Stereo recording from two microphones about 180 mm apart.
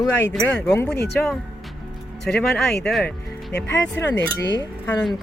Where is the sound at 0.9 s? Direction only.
65° left (ahead or behind).